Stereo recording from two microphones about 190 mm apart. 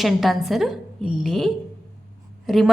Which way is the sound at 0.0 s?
Centre (ahead or behind).